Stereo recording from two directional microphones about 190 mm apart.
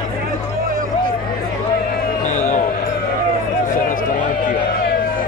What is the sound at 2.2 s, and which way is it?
Basketball bounce, 40° left (ahead or behind).